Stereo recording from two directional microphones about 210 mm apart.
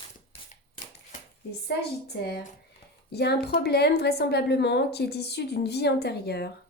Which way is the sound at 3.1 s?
50° left (ahead or behind).